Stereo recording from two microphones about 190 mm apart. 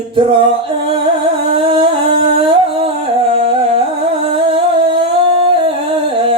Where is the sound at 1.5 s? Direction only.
30° right (ahead or behind).